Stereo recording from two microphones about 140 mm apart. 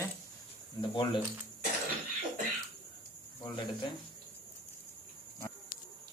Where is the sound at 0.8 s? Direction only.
35° left (ahead or behind).